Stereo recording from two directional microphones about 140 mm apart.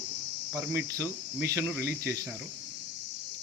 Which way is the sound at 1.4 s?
20° right (ahead or behind).